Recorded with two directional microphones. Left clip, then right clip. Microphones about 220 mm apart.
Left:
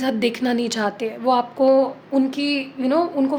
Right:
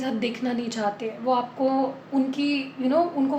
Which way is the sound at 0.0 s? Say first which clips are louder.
Left 6 dB; 50° left (ahead or behind).